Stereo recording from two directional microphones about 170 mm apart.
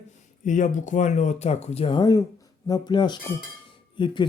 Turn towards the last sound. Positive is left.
turn(degrees=30)  # may be behind; listen again after turning